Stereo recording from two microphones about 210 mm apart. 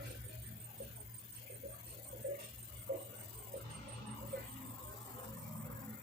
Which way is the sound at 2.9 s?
50° right (ahead or behind).